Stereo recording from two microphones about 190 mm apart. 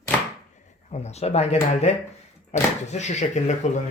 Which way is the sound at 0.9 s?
35° left (ahead or behind).